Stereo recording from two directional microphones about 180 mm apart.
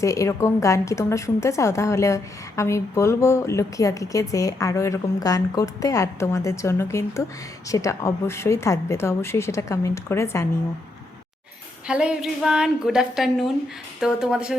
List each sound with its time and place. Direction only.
0.0 s a woman's voice: 15° left (ahead or behind)
11.9 s a woman's voice: 5° right (ahead or behind)